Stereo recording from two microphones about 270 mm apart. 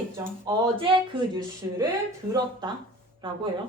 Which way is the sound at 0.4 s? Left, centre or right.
Centre.